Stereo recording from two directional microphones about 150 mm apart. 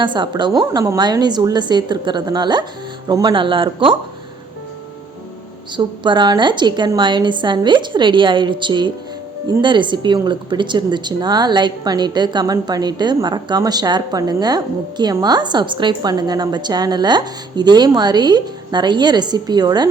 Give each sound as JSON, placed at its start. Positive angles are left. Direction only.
{"t": 0.0, "sound": "a woman's voice", "side_deg": -30}
{"t": 5.7, "sound": "a woman's voice", "side_deg": -30}